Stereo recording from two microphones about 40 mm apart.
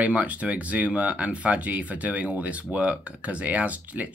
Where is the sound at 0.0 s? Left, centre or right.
Right.